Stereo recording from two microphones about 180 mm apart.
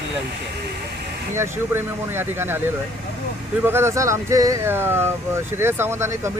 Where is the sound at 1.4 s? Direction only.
15° right (ahead or behind).